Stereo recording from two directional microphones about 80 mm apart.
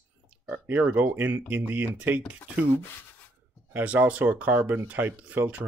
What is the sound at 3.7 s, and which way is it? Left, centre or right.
Speech, centre.